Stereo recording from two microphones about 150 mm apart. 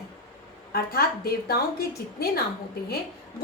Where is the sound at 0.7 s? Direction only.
90° left.